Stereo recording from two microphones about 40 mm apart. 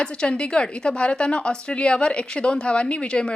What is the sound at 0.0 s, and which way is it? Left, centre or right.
A woman's voice, left.